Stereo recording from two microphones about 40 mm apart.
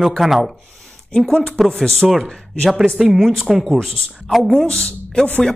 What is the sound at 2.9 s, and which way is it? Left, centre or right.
Speech, centre.